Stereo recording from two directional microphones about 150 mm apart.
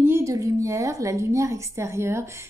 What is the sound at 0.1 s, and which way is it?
A woman's voice, 20° right (ahead or behind).